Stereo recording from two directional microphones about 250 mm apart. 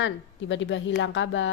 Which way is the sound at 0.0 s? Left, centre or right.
Left.